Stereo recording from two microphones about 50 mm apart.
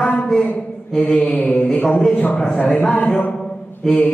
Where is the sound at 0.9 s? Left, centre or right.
Centre.